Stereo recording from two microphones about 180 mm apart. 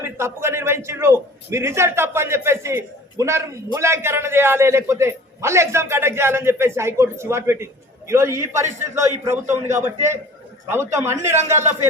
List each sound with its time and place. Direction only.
0.2 s a man's voice: 15° right (ahead or behind)